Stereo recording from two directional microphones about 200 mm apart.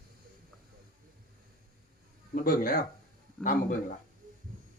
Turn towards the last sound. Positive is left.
turn(degrees=40)  # may be behind; listen again after turning